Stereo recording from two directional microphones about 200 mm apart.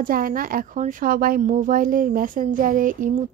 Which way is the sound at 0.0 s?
45° right (ahead or behind).